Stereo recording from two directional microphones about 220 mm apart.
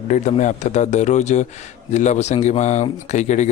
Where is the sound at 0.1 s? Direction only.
30° left (ahead or behind).